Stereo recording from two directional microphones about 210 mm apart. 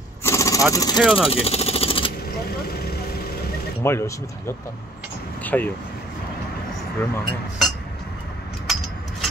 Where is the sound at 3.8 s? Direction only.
10° left (ahead or behind).